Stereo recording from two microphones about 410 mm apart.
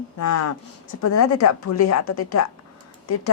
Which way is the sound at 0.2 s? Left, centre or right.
Left.